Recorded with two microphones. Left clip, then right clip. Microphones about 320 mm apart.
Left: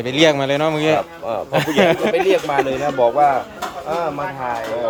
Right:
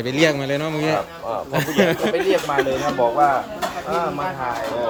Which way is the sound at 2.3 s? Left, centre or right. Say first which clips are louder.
Left 2 dB; left.